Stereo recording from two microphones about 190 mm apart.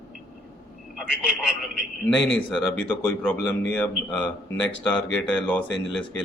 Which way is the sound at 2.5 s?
5° left (ahead or behind).